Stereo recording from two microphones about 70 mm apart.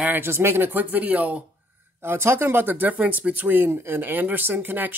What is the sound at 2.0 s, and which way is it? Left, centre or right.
Speech, right.